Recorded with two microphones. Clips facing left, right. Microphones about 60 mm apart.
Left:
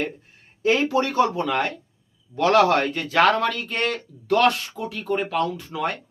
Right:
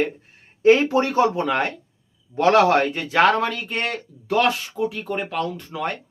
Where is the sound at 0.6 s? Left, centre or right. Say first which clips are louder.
Right 5 dB; right.